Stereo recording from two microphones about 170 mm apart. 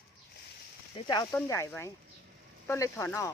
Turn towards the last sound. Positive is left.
turn(degrees=15)  # may be behind; listen again after turning